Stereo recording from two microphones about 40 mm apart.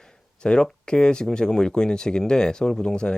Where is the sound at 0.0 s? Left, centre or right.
Centre.